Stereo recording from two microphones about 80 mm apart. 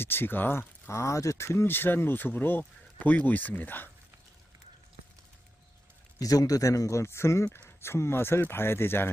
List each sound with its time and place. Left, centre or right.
0.0 s speech: left
6.2 s a man's voice: left